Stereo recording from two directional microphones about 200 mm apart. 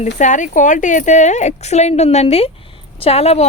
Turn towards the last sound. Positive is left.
turn(degrees=30)  # may be behind; listen again after turning